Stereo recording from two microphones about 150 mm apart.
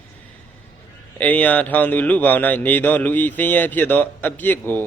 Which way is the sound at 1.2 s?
10° left (ahead or behind).